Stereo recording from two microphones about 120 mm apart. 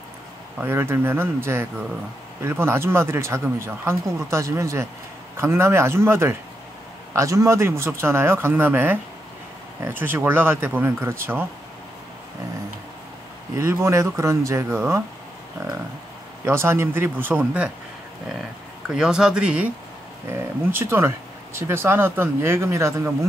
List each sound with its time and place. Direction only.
0.6 s speech: 15° right (ahead or behind)
13.6 s speech: 25° right (ahead or behind)
16.4 s speech: 20° right (ahead or behind)
18.9 s speech: 5° right (ahead or behind)
20.2 s speech: 20° right (ahead or behind)